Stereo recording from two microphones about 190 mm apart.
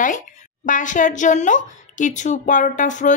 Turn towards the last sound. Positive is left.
turn(degrees=40)  # may be behind; listen again after turning